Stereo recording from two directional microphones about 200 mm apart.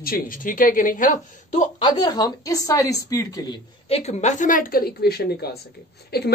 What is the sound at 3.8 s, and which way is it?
Speech, 30° left (ahead or behind).